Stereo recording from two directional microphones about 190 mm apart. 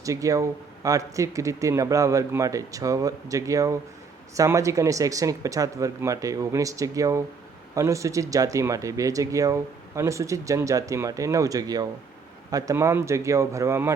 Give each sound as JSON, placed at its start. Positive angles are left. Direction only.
{"t": 0.0, "sound": "speech", "side_deg": -15}